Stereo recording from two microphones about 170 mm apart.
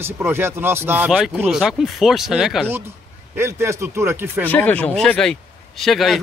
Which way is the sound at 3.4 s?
15° right (ahead or behind).